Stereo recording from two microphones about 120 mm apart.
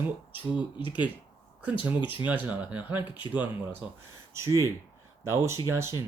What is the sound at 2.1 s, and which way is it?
Speech, 15° right (ahead or behind).